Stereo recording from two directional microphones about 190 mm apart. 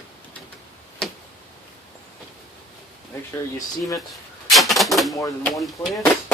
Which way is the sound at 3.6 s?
15° left (ahead or behind).